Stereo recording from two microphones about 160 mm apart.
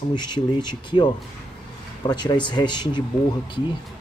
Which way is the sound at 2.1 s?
25° left (ahead or behind).